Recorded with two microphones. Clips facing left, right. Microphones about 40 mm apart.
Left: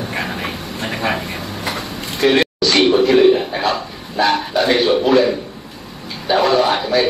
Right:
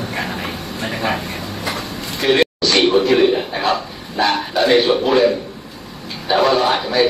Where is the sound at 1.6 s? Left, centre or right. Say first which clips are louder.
Even; left.